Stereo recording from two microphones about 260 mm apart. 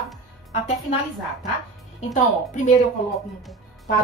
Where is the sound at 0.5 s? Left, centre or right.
Left.